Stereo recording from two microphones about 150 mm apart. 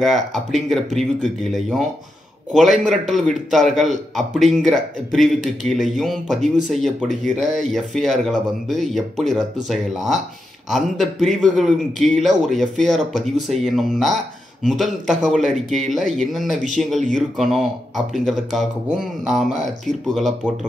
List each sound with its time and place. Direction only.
0.0 s a man's voice: centre (ahead or behind)